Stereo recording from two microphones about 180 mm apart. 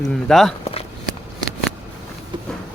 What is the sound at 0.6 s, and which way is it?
Walk, 35° left (ahead or behind).